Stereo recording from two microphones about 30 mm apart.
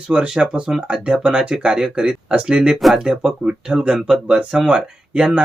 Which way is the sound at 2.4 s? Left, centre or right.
Right.